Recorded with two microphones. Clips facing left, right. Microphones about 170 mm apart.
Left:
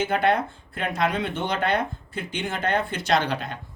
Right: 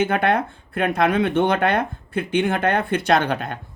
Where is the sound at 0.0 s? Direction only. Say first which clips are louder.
Right 3 dB; 55° right (ahead or behind).